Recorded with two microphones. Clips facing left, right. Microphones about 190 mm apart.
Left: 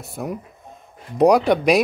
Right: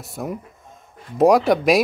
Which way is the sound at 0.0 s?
Centre (ahead or behind).